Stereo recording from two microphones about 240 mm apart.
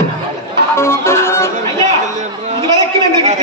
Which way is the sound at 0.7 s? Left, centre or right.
Centre.